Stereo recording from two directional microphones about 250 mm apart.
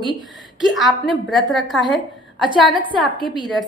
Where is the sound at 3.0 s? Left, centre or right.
Centre.